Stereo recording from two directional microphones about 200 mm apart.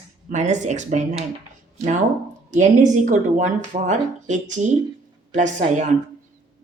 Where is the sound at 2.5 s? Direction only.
40° right (ahead or behind).